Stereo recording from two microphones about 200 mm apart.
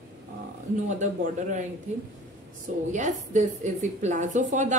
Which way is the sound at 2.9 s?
40° right (ahead or behind).